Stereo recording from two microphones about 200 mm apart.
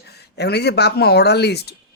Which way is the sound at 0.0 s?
55° left (ahead or behind).